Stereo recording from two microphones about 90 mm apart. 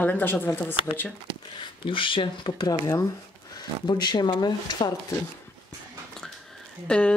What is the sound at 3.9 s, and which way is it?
Speech, 55° left (ahead or behind).